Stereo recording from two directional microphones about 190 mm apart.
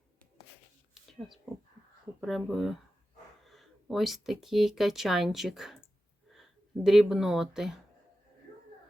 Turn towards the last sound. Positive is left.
turn(degrees=0)  # may be behind; listen again after turning